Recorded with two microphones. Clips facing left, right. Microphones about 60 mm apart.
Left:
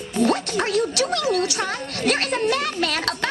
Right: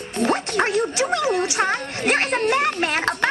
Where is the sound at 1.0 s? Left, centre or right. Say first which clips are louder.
Right 1 dB; right.